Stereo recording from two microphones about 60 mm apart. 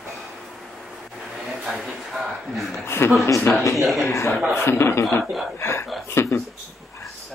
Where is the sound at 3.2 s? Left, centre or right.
Left.